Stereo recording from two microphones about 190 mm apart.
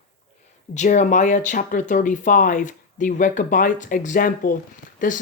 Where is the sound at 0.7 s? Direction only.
40° left (ahead or behind).